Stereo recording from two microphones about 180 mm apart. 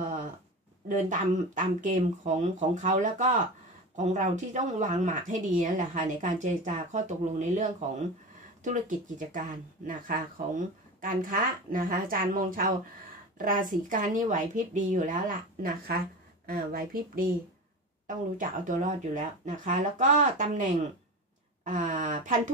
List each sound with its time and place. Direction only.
0.8 s speech: 45° right (ahead or behind)